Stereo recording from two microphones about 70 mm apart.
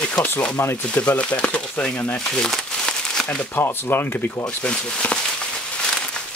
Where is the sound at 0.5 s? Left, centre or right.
Left.